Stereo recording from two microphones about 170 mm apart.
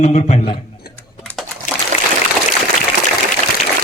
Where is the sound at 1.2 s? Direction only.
Centre (ahead or behind).